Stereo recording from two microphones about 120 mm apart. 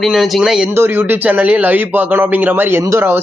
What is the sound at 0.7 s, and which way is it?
A man's voice, 20° right (ahead or behind).